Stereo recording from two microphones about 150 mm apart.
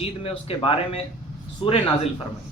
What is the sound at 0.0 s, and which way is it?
A man's voice, 40° left (ahead or behind).